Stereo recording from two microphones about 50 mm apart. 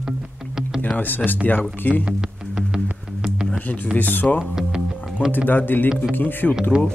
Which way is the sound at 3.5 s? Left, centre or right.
Left.